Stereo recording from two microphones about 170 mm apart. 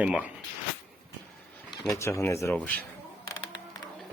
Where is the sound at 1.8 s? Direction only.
15° left (ahead or behind).